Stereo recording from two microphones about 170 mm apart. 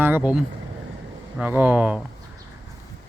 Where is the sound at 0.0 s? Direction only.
10° right (ahead or behind).